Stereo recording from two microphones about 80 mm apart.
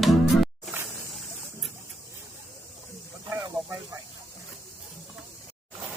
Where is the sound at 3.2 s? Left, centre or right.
Right.